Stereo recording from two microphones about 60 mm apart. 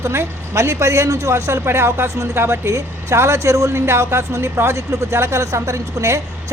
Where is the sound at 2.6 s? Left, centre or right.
Right.